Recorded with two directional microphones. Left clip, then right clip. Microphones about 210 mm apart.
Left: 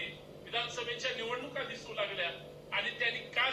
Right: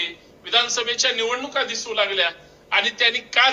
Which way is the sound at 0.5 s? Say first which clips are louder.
Right 16 dB; 45° right (ahead or behind).